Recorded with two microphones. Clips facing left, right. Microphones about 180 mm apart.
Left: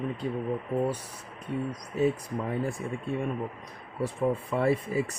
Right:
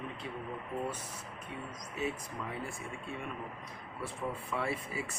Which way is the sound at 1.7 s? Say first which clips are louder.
Left 10 dB; 40° left (ahead or behind).